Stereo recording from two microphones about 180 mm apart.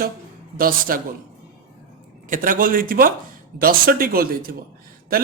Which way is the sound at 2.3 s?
50° right (ahead or behind).